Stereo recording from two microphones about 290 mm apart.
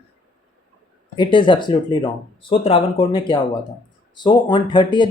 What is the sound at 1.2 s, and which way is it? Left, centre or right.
Speech, centre.